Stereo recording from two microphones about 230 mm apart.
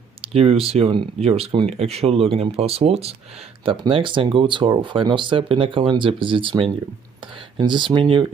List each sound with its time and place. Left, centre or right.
0.2 s speech: right